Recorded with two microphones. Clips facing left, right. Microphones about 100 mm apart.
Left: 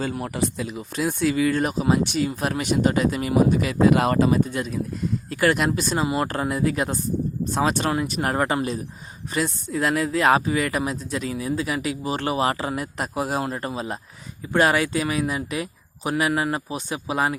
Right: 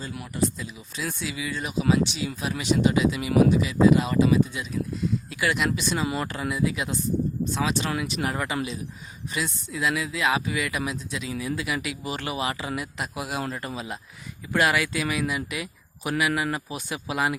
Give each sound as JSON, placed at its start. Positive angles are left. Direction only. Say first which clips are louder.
{"t": 0.3, "sound": "speech", "louder": "left 2 dB", "side_deg": 70}